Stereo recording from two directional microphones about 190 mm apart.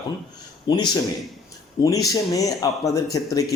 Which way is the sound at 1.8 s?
20° left (ahead or behind).